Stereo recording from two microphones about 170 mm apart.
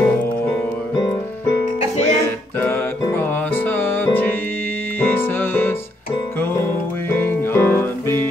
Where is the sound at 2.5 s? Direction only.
10° left (ahead or behind).